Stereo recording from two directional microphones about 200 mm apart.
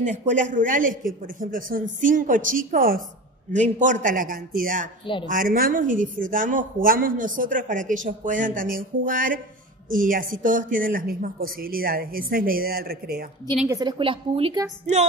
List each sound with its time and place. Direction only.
0.0 s a woman's voice: 35° right (ahead or behind)
13.7 s a woman's voice: 20° right (ahead or behind)